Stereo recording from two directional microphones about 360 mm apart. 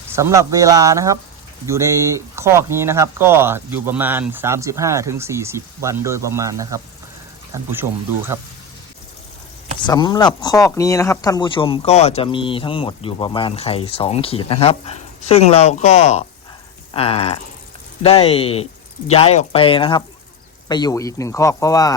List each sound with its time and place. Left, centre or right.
0.2 s speech: centre
9.8 s speech: centre